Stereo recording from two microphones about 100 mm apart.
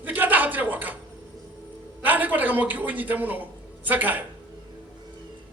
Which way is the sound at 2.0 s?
15° right (ahead or behind).